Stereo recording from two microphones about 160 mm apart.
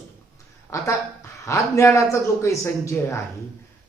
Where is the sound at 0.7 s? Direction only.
20° left (ahead or behind).